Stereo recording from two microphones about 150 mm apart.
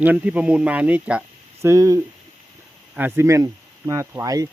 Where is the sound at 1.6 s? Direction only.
20° right (ahead or behind).